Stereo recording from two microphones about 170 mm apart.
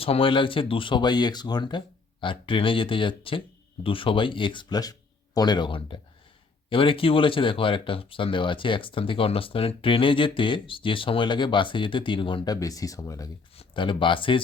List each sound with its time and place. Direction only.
0.0 s speech: 35° left (ahead or behind)